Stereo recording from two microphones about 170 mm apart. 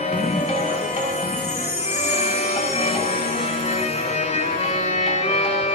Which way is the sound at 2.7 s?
40° left (ahead or behind).